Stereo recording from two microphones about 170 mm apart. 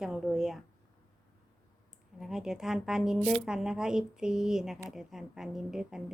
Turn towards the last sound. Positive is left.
turn(degrees=-5)  # may be behind; listen again after turning